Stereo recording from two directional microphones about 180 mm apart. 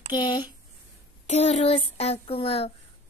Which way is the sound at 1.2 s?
40° left (ahead or behind).